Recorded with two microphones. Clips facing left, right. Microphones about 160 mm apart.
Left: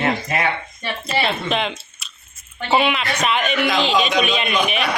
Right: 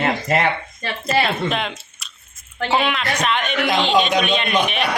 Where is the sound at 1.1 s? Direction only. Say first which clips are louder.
Right 2 dB; centre (ahead or behind).